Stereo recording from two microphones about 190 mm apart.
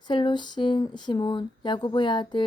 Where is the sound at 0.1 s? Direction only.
25° left (ahead or behind).